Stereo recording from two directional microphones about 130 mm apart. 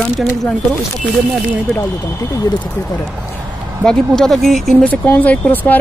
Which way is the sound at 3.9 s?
5° left (ahead or behind).